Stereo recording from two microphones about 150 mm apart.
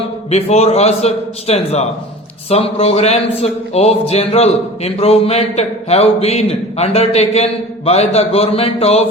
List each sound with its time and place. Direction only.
0.3 s speech: 45° left (ahead or behind)